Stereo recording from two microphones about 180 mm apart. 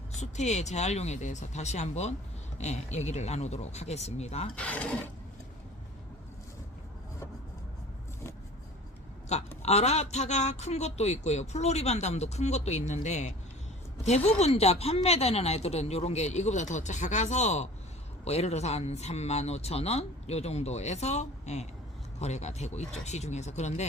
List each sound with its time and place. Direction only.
0.2 s a man's voice: 40° left (ahead or behind)
4.5 s speech: 10° left (ahead or behind)
9.3 s a man's voice: 40° left (ahead or behind)